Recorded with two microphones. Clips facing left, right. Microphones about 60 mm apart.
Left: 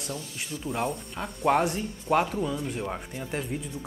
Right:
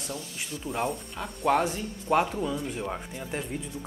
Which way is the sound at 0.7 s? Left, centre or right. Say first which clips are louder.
Even; centre.